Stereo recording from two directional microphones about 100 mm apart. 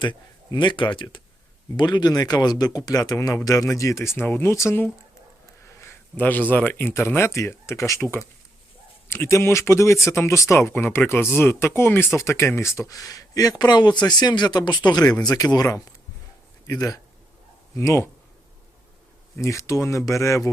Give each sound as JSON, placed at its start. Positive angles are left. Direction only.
{"t": 0.0, "sound": "speech", "side_deg": 50}
{"t": 19.4, "sound": "speech", "side_deg": 30}